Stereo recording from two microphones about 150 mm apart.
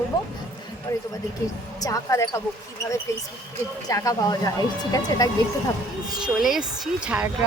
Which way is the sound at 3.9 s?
25° left (ahead or behind).